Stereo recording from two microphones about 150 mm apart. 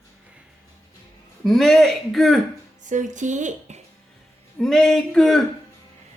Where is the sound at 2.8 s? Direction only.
55° right (ahead or behind).